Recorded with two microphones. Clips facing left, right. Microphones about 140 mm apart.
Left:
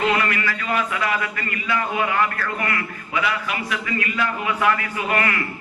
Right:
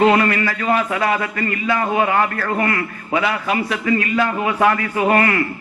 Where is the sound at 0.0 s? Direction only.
35° right (ahead or behind).